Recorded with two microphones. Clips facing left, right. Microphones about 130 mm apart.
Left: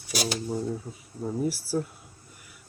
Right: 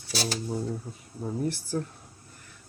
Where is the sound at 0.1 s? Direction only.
10° left (ahead or behind).